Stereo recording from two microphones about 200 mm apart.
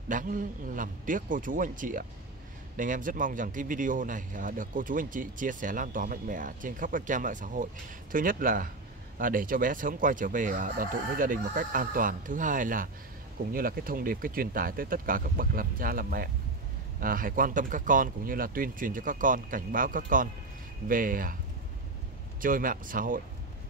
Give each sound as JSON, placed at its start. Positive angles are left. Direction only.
{"t": 0.1, "sound": "a man's voice", "side_deg": -40}
{"t": 22.4, "sound": "speech", "side_deg": -45}